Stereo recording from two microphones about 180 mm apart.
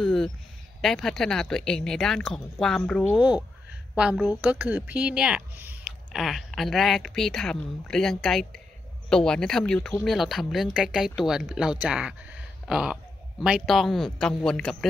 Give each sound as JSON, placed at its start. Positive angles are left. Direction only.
{"t": 0.0, "sound": "a sound", "side_deg": 0}
{"t": 0.7, "sound": "speech", "side_deg": 0}
{"t": 3.9, "sound": "speech", "side_deg": -5}